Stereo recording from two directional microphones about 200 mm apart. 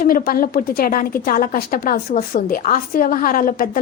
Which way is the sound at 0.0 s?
45° left (ahead or behind).